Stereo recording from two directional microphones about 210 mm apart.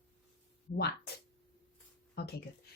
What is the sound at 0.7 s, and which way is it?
Speech, 50° left (ahead or behind).